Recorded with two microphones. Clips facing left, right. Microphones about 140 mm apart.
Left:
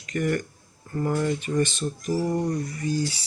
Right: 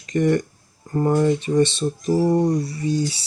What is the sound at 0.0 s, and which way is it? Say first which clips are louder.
Speech: right 7 dB; 30° right (ahead or behind).